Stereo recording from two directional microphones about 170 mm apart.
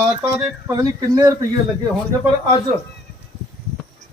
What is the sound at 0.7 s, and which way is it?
Speech, 20° right (ahead or behind).